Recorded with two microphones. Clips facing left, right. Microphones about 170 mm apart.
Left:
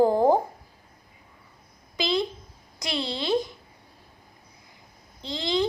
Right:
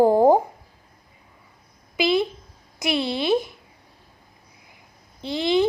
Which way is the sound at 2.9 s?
15° right (ahead or behind).